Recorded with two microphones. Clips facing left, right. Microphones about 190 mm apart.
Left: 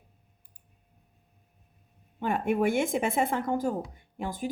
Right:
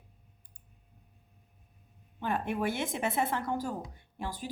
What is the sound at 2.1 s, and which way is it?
A woman's voice, 50° left (ahead or behind).